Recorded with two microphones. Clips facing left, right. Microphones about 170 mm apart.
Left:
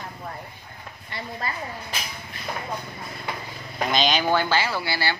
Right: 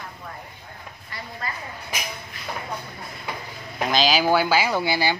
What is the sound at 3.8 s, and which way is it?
Speech, centre (ahead or behind).